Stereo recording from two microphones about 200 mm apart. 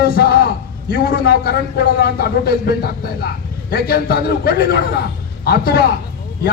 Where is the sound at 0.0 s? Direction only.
50° left (ahead or behind).